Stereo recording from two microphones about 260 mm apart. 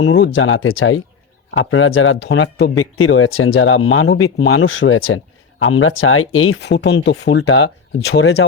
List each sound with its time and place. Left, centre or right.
0.0 s speech: left
2.7 s speech: left
7.2 s speech: left